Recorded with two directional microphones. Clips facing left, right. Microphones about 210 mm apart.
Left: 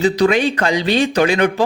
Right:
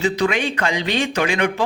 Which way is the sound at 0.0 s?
35° left (ahead or behind).